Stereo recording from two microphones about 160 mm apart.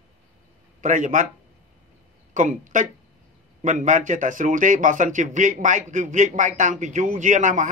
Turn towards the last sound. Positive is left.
turn(degrees=-50)  # may be behind; listen again after turning